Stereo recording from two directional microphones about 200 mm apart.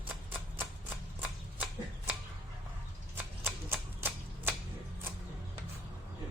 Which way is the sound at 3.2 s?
10° right (ahead or behind).